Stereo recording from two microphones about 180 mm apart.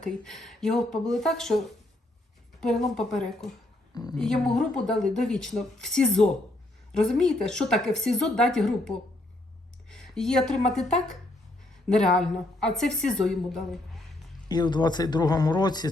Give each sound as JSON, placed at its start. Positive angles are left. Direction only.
{"t": 0.0, "sound": "speech", "side_deg": 0}
{"t": 9.9, "sound": "speech", "side_deg": 0}
{"t": 14.4, "sound": "speech", "side_deg": 25}